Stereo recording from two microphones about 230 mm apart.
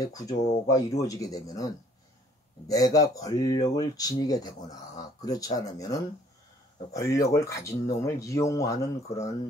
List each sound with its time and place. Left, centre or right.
0.0 s speech: centre
2.7 s speech: centre